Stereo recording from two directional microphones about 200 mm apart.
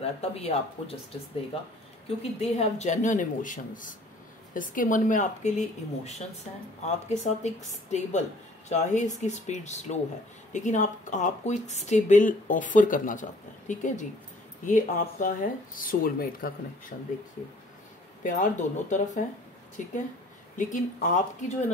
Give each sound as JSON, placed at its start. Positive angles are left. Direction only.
{"t": 0.0, "sound": "speech", "side_deg": 30}
{"t": 2.0, "sound": "speech", "side_deg": 30}
{"t": 18.2, "sound": "speech", "side_deg": 40}